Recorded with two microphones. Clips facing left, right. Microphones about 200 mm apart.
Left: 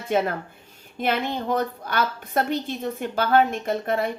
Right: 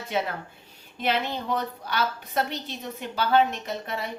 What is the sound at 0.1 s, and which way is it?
A woman's voice, 50° left (ahead or behind).